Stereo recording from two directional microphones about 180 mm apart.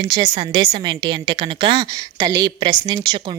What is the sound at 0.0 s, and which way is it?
Speech, 30° right (ahead or behind).